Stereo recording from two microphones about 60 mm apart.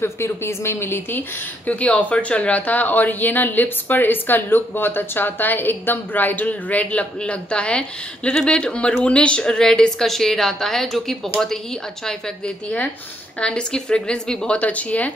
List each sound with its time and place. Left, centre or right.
0.0 s speech: left
1.7 s a woman's voice: left
14.6 s a woman's voice: left